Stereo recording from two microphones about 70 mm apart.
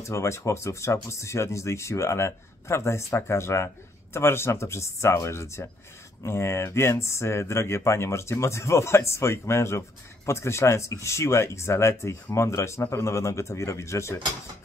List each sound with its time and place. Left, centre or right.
0.0 s speech: left